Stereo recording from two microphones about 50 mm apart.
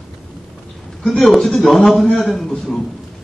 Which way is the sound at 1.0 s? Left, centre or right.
Centre.